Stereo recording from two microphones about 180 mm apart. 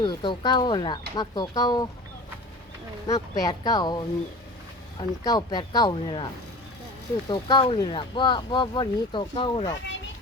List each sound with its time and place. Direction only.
0.0 s speech: 25° left (ahead or behind)
3.1 s speech: 20° left (ahead or behind)
7.3 s speech: 25° left (ahead or behind)